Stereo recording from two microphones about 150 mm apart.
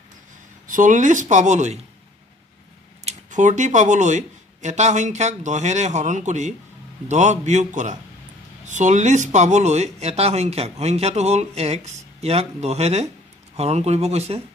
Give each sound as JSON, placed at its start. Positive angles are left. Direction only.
{"t": 0.7, "sound": "speech", "side_deg": -60}
{"t": 3.1, "sound": "speech", "side_deg": -55}